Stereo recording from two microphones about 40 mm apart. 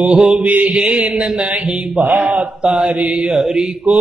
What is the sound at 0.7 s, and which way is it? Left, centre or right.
Mantra, centre.